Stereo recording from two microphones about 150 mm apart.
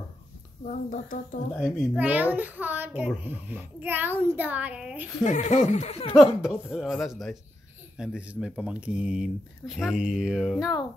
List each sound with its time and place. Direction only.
0.7 s a woman's voice: 55° left (ahead or behind)
2.0 s a child's voice: 10° right (ahead or behind)
5.2 s speech: 55° left (ahead or behind)
6.1 s speech: 5° right (ahead or behind)